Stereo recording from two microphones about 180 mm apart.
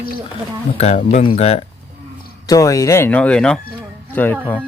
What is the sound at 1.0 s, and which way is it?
Speech, 35° left (ahead or behind).